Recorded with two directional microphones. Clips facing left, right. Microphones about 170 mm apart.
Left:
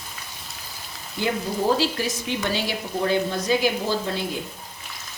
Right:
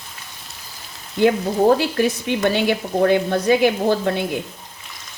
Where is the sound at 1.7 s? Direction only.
60° right (ahead or behind).